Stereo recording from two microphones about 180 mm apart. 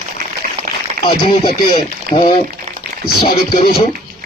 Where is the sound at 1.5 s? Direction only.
30° left (ahead or behind).